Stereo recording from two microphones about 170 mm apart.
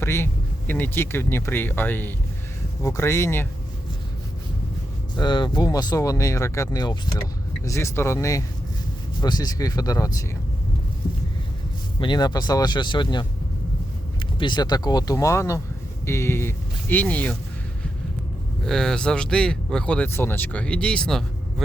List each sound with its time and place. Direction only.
0.0 s speech: 15° left (ahead or behind)
5.1 s speech: 25° left (ahead or behind)
11.9 s speech: 25° left (ahead or behind); by 17.3 s 10° left (ahead or behind)
18.6 s speech: 5° left (ahead or behind)